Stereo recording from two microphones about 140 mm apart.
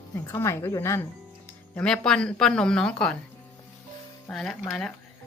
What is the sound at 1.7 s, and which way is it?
A woman's voice, 5° left (ahead or behind).